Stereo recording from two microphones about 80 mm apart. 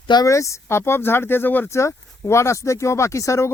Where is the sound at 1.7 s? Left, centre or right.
Left.